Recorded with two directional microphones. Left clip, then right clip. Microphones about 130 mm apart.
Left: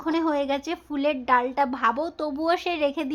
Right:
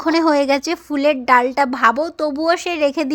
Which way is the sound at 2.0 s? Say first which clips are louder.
Right 8 dB; 20° right (ahead or behind).